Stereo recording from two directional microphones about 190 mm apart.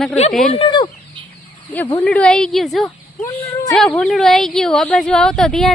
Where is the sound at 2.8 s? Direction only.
20° left (ahead or behind).